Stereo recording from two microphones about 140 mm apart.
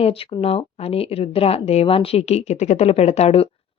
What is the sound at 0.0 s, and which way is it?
Speech, 40° left (ahead or behind).